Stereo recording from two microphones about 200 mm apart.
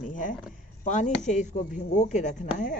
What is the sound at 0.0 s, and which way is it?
Speech, 40° left (ahead or behind).